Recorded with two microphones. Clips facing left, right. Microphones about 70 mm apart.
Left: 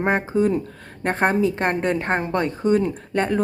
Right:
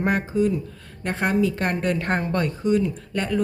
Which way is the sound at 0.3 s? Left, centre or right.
Left.